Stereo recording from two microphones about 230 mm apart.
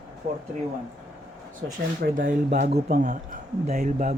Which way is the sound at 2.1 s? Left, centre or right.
Right.